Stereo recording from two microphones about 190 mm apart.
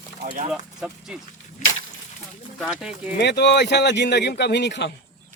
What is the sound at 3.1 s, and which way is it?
A man's voice, 65° left (ahead or behind).